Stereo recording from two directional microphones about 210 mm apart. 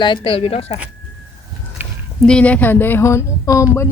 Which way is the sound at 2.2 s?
5° left (ahead or behind).